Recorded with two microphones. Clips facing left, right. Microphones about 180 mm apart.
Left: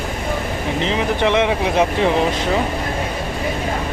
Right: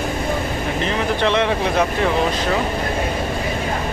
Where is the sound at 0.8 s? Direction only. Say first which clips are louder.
Left 2 dB; 15° left (ahead or behind).